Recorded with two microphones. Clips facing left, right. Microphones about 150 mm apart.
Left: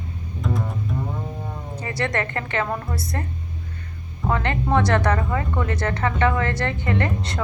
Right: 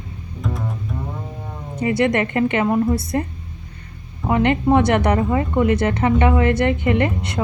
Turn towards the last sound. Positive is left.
turn(degrees=-20)  # may be behind; listen again after turning